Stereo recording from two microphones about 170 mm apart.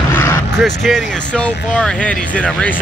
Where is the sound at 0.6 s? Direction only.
Centre (ahead or behind).